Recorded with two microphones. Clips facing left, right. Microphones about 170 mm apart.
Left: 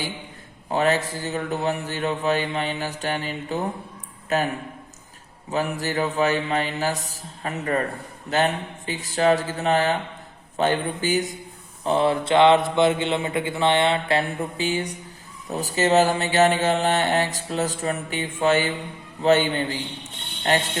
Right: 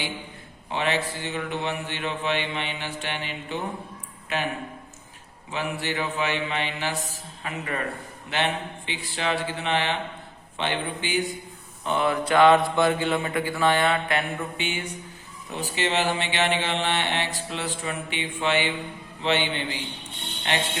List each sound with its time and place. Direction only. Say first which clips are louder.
0.7 s a man's voice: left 5 dB; 40° left (ahead or behind)
5.5 s a man's voice: left 4 dB; 40° left (ahead or behind)